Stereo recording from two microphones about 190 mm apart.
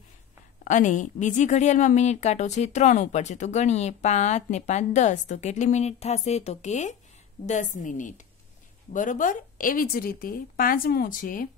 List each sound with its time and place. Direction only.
0.7 s a woman's voice: 40° left (ahead or behind)